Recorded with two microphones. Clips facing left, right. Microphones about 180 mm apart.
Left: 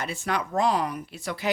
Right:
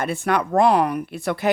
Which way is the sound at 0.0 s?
55° right (ahead or behind).